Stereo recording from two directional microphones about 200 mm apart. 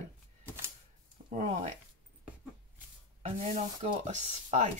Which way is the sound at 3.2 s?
30° right (ahead or behind).